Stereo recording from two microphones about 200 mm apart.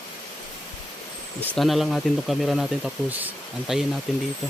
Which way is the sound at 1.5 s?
Centre (ahead or behind).